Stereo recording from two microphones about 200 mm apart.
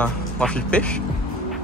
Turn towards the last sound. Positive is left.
turn(degrees=5)  # may be behind; listen again after turning